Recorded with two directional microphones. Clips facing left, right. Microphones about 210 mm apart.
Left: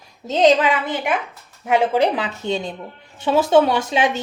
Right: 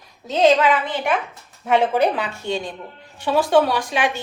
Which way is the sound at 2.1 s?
20° left (ahead or behind).